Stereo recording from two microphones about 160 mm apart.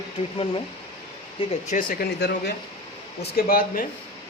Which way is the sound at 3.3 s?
65° left (ahead or behind).